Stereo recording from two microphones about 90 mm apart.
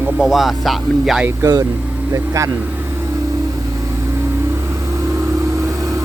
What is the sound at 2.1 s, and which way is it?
Speech, 35° right (ahead or behind).